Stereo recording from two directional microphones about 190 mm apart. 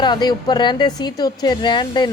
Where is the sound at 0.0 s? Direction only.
20° left (ahead or behind).